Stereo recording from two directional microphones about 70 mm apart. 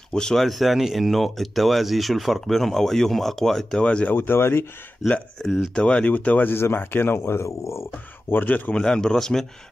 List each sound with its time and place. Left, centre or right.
0.1 s speech: centre
3.8 s speech: centre
4.1 s speech: left
5.4 s speech: centre
5.8 s speech: centre; by 7.8 s left
8.3 s speech: left
8.7 s speech: centre